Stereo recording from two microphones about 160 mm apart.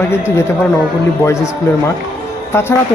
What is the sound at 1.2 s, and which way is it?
Speech, 15° left (ahead or behind).